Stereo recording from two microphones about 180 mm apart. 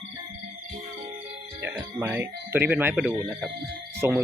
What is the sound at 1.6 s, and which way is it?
Speech, 15° right (ahead or behind).